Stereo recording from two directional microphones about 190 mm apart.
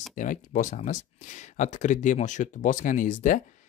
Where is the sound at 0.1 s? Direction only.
40° left (ahead or behind).